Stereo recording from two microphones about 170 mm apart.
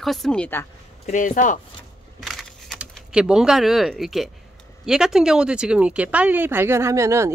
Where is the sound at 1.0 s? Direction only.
50° left (ahead or behind).